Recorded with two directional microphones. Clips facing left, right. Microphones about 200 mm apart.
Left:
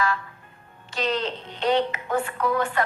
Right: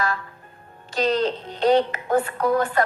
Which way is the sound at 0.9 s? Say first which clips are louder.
Right 5 dB; 40° right (ahead or behind).